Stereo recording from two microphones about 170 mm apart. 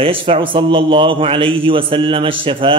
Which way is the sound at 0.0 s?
30° right (ahead or behind).